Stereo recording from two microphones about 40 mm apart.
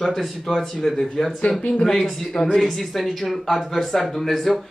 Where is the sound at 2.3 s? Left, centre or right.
Left.